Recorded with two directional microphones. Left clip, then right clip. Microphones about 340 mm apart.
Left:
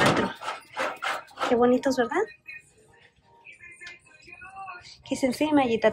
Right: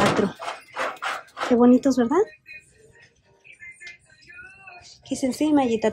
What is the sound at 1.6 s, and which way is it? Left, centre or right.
Speech, centre.